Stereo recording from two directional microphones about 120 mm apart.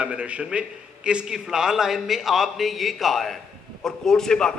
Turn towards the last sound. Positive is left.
turn(degrees=5)  # may be behind; listen again after turning